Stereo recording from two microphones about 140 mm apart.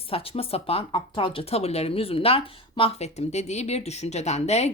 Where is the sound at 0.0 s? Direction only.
45° left (ahead or behind).